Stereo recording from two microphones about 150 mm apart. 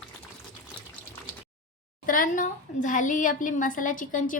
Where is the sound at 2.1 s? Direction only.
65° left (ahead or behind).